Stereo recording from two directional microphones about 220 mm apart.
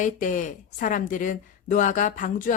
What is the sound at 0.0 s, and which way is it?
Speech, 35° left (ahead or behind).